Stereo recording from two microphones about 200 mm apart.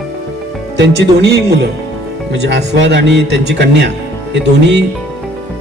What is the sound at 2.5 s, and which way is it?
Speech, 60° right (ahead or behind).